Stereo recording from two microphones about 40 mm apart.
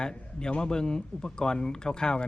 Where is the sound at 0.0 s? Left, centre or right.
Centre.